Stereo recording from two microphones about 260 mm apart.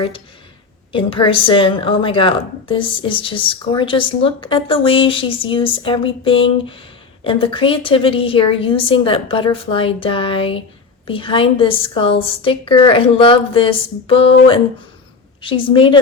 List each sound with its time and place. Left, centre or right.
0.9 s a woman's voice: centre